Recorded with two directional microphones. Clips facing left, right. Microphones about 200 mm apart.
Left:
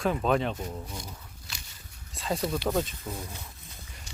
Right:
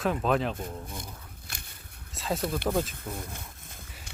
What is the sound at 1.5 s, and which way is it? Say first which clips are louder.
Biting: even; 55° right (ahead or behind).